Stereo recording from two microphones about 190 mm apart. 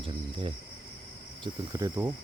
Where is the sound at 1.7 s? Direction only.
20° right (ahead or behind).